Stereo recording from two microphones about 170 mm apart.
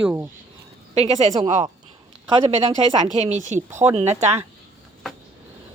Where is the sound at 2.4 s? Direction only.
35° right (ahead or behind).